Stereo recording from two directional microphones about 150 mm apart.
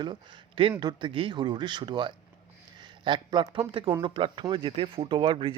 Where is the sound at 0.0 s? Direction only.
30° right (ahead or behind).